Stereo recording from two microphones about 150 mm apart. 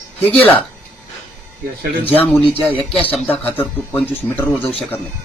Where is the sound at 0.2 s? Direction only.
10° left (ahead or behind).